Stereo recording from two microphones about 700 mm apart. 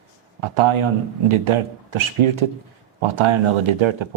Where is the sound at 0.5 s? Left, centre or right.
Right.